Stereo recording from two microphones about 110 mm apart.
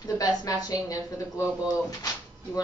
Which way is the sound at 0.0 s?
35° left (ahead or behind).